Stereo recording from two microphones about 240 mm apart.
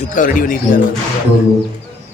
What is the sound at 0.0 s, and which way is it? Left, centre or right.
Speech, left.